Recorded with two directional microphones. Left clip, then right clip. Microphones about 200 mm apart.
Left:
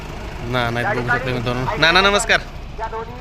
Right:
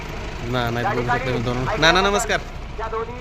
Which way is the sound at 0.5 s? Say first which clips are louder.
Left 3 dB; centre (ahead or behind).